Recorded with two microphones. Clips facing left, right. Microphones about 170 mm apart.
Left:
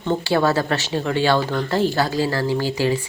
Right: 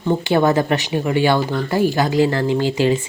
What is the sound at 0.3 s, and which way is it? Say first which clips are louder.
Speech: right 3 dB; 20° right (ahead or behind).